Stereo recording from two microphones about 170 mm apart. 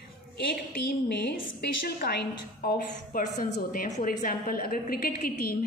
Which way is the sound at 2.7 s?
55° left (ahead or behind).